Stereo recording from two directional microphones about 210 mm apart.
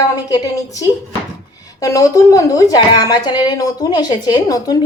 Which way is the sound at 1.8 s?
15° left (ahead or behind).